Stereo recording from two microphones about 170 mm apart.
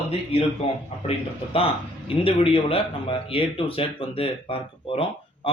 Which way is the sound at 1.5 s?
35° left (ahead or behind).